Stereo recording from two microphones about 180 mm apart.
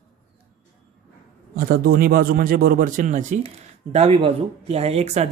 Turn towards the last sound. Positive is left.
turn(degrees=-40)  # may be behind; listen again after turning